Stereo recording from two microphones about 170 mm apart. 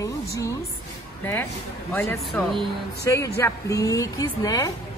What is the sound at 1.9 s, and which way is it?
A woman's voice, 10° left (ahead or behind).